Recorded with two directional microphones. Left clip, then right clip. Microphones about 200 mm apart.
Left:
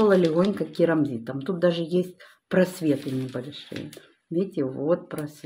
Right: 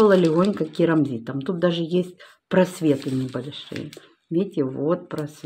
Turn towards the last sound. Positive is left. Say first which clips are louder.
# right 1 dB
turn(degrees=-25)  # may be behind; listen again after turning